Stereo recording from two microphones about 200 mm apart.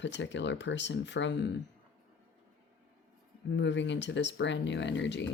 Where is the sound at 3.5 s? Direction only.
65° left (ahead or behind).